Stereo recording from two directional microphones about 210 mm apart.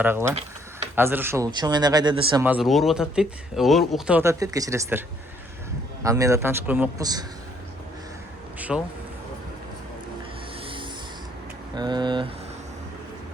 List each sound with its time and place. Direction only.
0.0 s a man's voice: 10° right (ahead or behind)
2.4 s a man's voice: 5° right (ahead or behind)
8.5 s a sound: 5° right (ahead or behind)
11.7 s speech: 20° right (ahead or behind)